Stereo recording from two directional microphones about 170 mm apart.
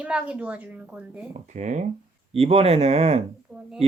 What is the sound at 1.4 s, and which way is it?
Speech, 45° right (ahead or behind).